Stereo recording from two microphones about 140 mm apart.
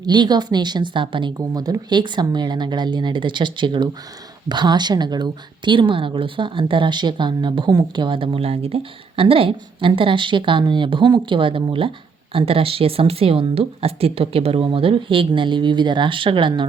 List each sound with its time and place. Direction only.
0.0 s speech: 30° right (ahead or behind)
1.4 s speech: 25° right (ahead or behind)